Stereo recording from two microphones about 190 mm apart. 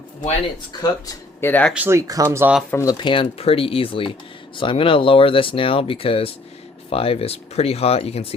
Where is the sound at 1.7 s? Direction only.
10° right (ahead or behind).